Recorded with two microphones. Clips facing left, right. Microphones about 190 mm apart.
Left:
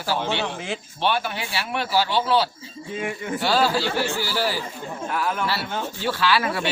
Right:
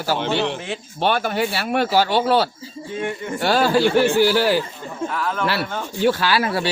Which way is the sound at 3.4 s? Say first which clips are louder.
Right 5 dB; 55° right (ahead or behind).